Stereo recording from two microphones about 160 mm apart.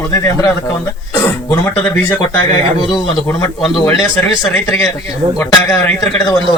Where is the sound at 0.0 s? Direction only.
20° left (ahead or behind).